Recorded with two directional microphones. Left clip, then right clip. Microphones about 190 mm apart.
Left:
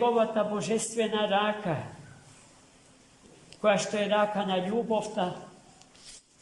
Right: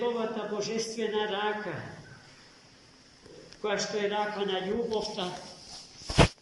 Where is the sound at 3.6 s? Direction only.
60° left (ahead or behind).